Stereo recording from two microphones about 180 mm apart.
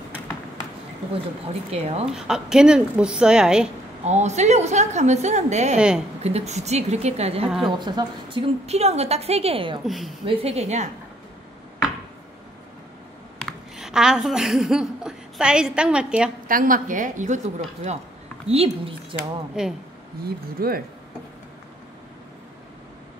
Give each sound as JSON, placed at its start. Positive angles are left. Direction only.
{"t": 1.7, "sound": "a woman's voice", "side_deg": -35}
{"t": 2.0, "sound": "a woman's voice", "side_deg": -5}
{"t": 4.0, "sound": "a woman's voice", "side_deg": -40}
{"t": 5.8, "sound": "a woman's voice", "side_deg": -5}
{"t": 6.2, "sound": "a woman's voice", "side_deg": -35}
{"t": 7.4, "sound": "a woman's voice", "side_deg": 0}
{"t": 7.7, "sound": "a woman's voice", "side_deg": -25}
{"t": 9.8, "sound": "a woman's voice", "side_deg": 0}
{"t": 10.2, "sound": "a woman's voice", "side_deg": -35}
{"t": 13.4, "sound": "a woman's voice", "side_deg": 0}
{"t": 16.4, "sound": "a woman's voice", "side_deg": -50}
{"t": 18.5, "sound": "a woman's voice", "side_deg": -30}
{"t": 19.6, "sound": "a woman's voice", "side_deg": -5}
{"t": 20.2, "sound": "speech", "side_deg": -55}